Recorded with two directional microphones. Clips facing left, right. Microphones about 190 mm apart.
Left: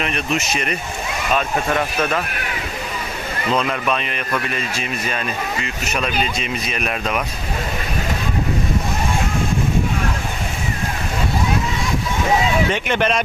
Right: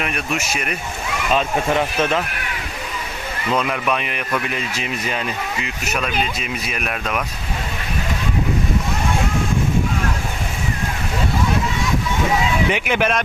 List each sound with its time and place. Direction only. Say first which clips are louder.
0.0 s a man's voice: left 2 dB; 10° right (ahead or behind)
1.4 s speech: right 2 dB; 20° right (ahead or behind)
3.5 s a man's voice: even; 10° right (ahead or behind)
12.6 s a man's voice: even; 10° right (ahead or behind)